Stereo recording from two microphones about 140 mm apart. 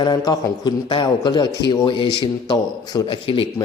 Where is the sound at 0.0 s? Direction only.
30° left (ahead or behind).